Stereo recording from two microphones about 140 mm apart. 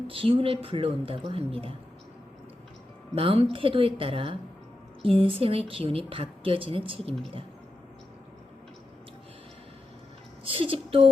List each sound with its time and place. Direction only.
0.1 s a woman's voice: 40° right (ahead or behind)
3.2 s a woman's voice: 40° right (ahead or behind)
10.4 s a woman's voice: 40° right (ahead or behind)